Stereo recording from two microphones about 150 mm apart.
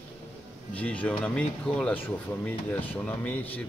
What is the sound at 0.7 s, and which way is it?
Speech, 10° left (ahead or behind).